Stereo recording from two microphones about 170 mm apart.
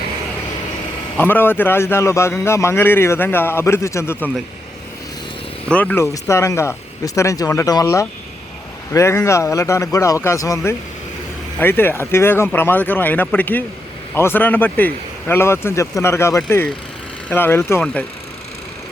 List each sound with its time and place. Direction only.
1.1 s a man's voice: 10° left (ahead or behind)
5.6 s a man's voice: 10° left (ahead or behind)